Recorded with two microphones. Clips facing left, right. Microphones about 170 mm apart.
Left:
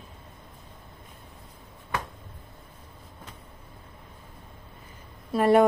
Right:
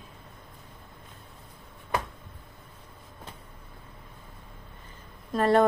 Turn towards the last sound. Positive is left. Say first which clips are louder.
# left 2 dB
turn(degrees=10)  # may be behind; listen again after turning